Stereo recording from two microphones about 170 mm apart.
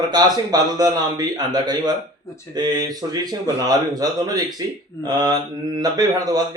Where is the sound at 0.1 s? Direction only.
25° right (ahead or behind).